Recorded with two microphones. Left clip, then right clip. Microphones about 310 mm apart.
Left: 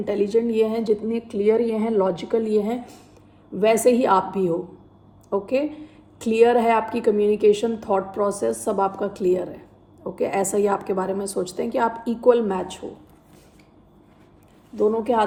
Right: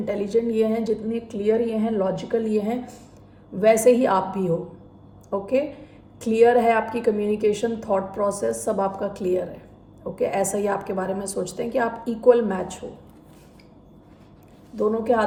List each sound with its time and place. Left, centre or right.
0.0 s a woman's voice: left
4.0 s a woman's voice: left
14.8 s a woman's voice: left